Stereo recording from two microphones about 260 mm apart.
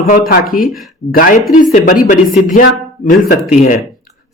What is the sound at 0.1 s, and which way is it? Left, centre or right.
Speech, left.